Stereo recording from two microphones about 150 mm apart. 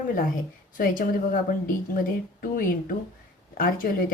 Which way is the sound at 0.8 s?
70° left (ahead or behind).